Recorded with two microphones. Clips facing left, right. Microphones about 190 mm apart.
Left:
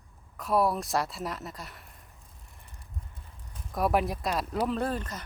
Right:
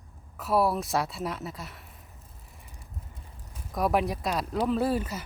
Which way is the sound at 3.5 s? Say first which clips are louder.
Right 1 dB; centre (ahead or behind).